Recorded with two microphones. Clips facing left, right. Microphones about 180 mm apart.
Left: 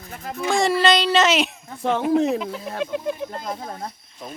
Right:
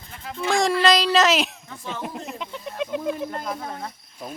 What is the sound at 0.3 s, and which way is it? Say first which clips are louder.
Speech: left 1 dB; 5° left (ahead or behind).